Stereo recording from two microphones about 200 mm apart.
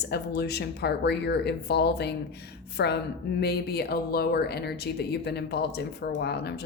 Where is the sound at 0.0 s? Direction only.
55° left (ahead or behind).